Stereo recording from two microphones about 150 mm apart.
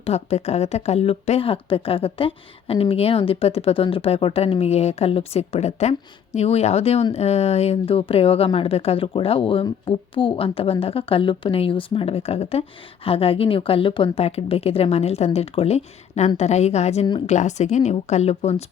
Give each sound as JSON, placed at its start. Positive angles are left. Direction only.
{"t": 0.0, "sound": "speech", "side_deg": 45}